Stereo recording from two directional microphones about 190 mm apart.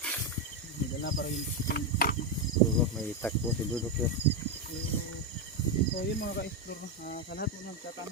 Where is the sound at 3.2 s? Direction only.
10° left (ahead or behind).